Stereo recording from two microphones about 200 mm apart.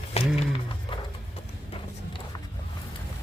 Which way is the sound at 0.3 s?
25° left (ahead or behind).